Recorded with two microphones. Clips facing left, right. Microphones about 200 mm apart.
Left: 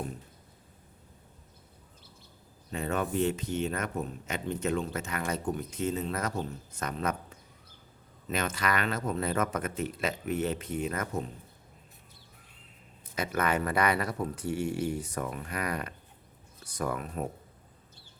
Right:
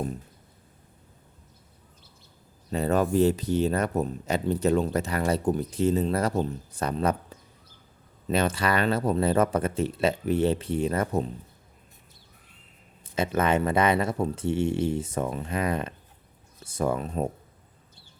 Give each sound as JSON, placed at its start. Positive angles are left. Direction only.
{"t": 2.6, "sound": "speech", "side_deg": -35}
{"t": 13.1, "sound": "speech", "side_deg": -25}